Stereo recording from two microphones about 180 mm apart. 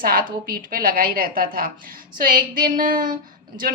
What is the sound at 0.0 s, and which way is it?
A woman's voice, 55° right (ahead or behind).